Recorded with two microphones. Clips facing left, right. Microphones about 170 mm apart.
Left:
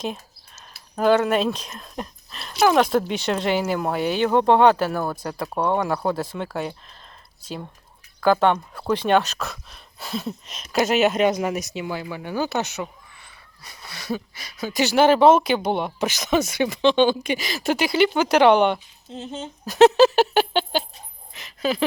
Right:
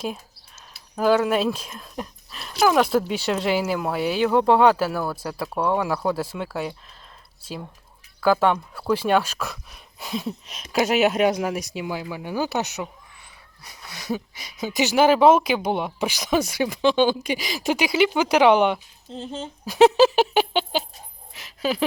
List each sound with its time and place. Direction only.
0.9 s speech: 5° right (ahead or behind)
8.2 s speech: 5° right (ahead or behind)
19.6 s speech: 10° right (ahead or behind)
20.4 s a sound: centre (ahead or behind)